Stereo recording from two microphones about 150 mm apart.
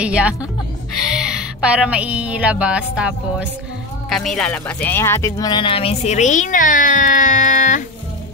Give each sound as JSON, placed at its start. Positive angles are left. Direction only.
{"t": 0.0, "sound": "a woman's voice", "side_deg": -10}